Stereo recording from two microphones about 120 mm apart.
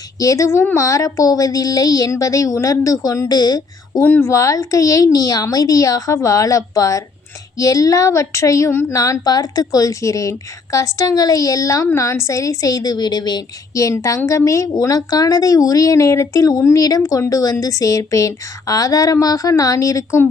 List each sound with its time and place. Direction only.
0.2 s speech: 25° left (ahead or behind)
4.0 s speech: 15° left (ahead or behind)